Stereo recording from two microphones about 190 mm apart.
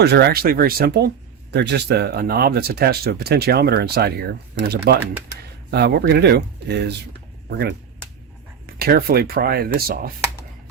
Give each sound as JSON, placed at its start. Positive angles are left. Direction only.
{"t": 0.0, "sound": "speech", "side_deg": -60}
{"t": 8.6, "sound": "speech", "side_deg": -55}